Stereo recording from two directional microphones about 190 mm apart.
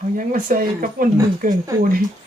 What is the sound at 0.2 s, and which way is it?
Speech, 45° right (ahead or behind).